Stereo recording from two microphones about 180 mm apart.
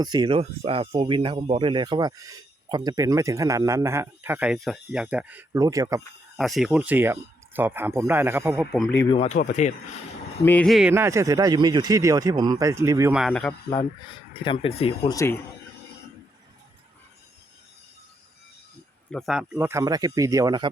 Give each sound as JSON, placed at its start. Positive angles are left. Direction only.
{"t": 0.0, "sound": "speech", "side_deg": -25}
{"t": 6.3, "sound": "speech", "side_deg": 0}
{"t": 8.5, "sound": "speech", "side_deg": 0}
{"t": 9.0, "sound": "speech", "side_deg": 35}
{"t": 10.4, "sound": "speech", "side_deg": 10}
{"t": 10.9, "sound": "speech", "side_deg": -15}
{"t": 13.1, "sound": "speech", "side_deg": 0}
{"t": 14.4, "sound": "speech", "side_deg": 30}
{"t": 15.1, "sound": "speech", "side_deg": 15}
{"t": 19.1, "sound": "speech", "side_deg": 0}